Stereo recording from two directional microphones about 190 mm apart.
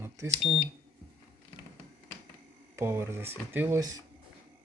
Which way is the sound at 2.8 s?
15° right (ahead or behind).